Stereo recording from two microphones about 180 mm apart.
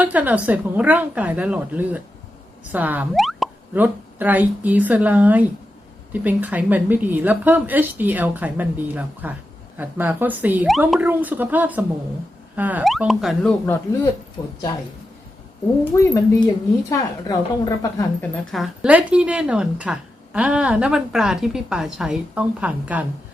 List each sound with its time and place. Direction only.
0.0 s a woman's voice: 10° right (ahead or behind)
14.4 s a woman's voice: 20° left (ahead or behind)
15.8 s a woman's voice: 15° left (ahead or behind)
18.5 s a woman's voice: 5° right (ahead or behind)